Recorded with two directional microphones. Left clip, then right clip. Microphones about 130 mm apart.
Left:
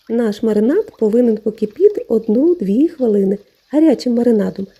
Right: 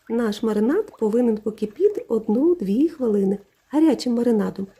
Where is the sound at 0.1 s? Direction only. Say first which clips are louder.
Left 6 dB; 30° left (ahead or behind).